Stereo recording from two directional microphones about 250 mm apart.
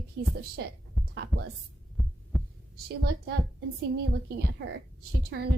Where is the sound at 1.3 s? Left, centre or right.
Centre.